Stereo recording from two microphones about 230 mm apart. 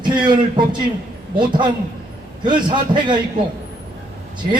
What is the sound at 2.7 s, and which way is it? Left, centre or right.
Speech, centre.